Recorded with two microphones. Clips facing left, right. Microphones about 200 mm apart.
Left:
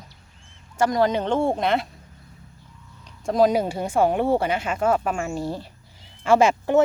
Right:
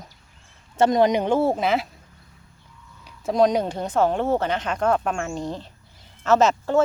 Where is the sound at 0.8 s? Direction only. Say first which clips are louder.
Right 3 dB; 20° right (ahead or behind); by 1.8 s centre (ahead or behind).